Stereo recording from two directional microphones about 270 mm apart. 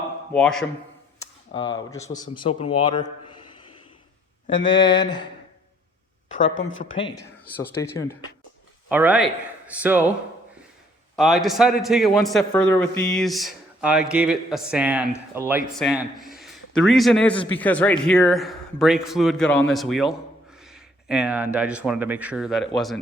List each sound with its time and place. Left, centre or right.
0.3 s a man's voice: centre
1.7 s speech: centre
4.6 s speech: centre
6.4 s speech: left
7.0 s speech: centre
7.5 s speech: centre
8.9 s a man's voice: centre
11.2 s a man's voice: centre